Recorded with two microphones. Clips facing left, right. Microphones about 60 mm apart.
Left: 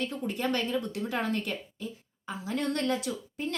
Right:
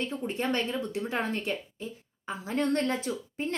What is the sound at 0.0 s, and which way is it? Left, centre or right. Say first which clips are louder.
A woman's voice: even; right.